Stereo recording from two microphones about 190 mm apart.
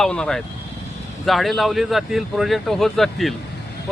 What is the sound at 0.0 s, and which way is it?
Speech, 5° left (ahead or behind).